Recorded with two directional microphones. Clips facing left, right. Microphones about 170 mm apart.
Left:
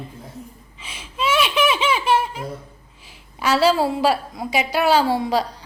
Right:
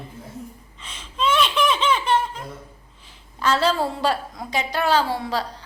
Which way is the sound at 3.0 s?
10° left (ahead or behind).